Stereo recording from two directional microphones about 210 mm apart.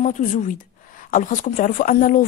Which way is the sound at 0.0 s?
35° left (ahead or behind).